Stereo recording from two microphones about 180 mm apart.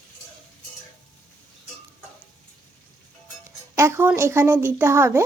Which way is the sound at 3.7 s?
15° right (ahead or behind).